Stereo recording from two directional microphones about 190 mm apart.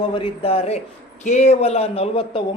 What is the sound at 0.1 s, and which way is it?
Speech, 30° left (ahead or behind).